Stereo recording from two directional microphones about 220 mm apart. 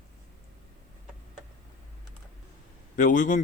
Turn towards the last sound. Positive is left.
turn(degrees=35)  # may be behind; listen again after turning